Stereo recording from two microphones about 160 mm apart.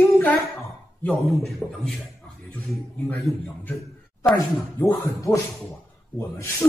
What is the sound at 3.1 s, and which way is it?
Speech, centre (ahead or behind).